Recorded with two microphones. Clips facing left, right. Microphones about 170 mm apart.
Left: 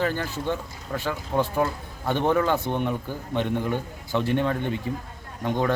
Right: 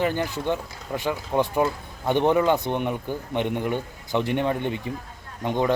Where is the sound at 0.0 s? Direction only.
15° right (ahead or behind).